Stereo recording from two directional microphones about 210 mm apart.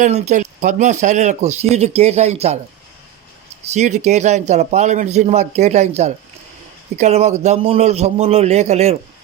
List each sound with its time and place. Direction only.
0.0 s speech: 35° right (ahead or behind)
3.7 s speech: 35° right (ahead or behind)